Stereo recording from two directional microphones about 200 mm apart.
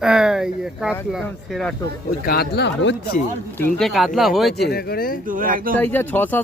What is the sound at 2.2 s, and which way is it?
Speech, 50° left (ahead or behind).